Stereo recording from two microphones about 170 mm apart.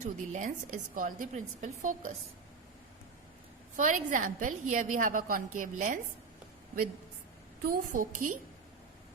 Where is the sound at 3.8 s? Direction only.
50° right (ahead or behind).